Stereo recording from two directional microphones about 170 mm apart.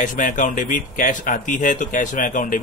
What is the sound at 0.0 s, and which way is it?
Speech, 50° left (ahead or behind).